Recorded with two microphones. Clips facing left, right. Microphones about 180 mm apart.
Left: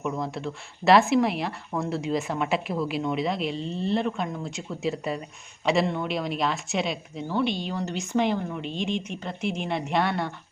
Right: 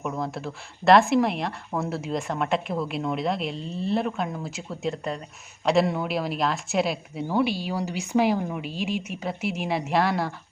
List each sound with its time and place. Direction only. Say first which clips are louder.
0.0 s a woman's voice: even; centre (ahead or behind)